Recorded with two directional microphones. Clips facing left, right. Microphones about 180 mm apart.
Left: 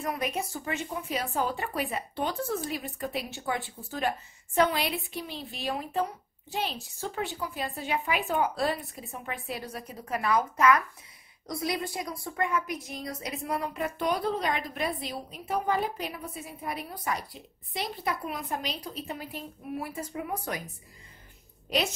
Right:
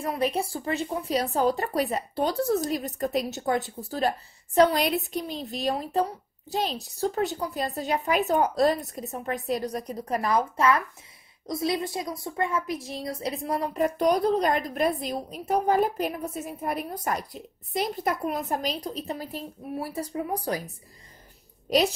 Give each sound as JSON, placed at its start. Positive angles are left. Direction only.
{"t": 0.0, "sound": "a woman's voice", "side_deg": -30}
{"t": 21.6, "sound": "a woman's voice", "side_deg": -40}